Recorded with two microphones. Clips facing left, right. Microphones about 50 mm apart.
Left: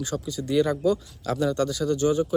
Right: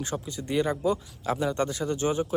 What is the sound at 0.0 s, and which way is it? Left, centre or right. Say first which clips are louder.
Speech: left 3 dB; right.